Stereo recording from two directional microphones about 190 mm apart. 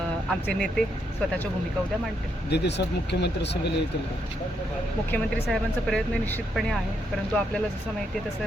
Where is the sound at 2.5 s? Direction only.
65° left (ahead or behind).